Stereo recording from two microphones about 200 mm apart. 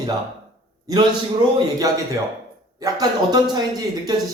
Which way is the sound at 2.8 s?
20° right (ahead or behind).